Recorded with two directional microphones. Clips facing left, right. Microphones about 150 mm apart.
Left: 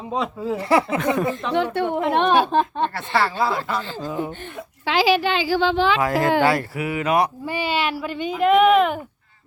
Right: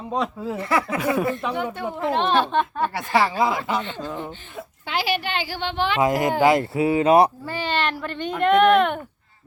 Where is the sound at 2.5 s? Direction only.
40° left (ahead or behind).